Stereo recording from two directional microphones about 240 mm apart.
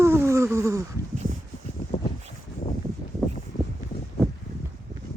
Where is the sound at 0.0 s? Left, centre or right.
Centre.